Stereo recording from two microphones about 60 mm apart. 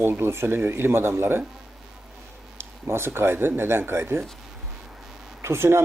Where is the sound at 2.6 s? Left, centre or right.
Right.